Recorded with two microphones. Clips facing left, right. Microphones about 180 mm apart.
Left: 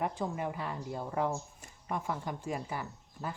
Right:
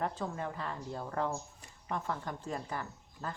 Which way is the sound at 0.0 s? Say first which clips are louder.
Left 2 dB; 15° left (ahead or behind).